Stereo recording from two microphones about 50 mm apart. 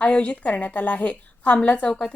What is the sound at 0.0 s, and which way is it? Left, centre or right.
Speech, left.